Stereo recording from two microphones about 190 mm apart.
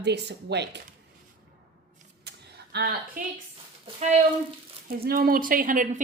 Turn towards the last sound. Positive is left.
turn(degrees=-45)  # may be behind; listen again after turning